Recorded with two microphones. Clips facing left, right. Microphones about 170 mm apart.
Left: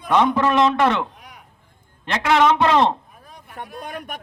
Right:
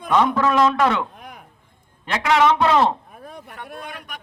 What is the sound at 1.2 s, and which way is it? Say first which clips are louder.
Chop: right 5 dB; 50° right (ahead or behind).